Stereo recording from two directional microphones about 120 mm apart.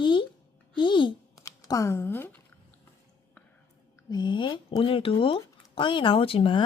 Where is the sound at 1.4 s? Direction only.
30° left (ahead or behind).